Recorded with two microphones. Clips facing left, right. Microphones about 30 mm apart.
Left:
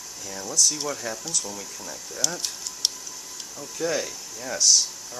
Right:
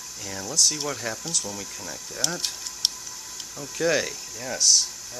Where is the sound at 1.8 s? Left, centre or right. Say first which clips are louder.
Left 1 dB; right.